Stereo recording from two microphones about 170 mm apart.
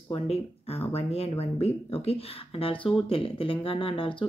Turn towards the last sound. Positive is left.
turn(degrees=30)  # may be behind; listen again after turning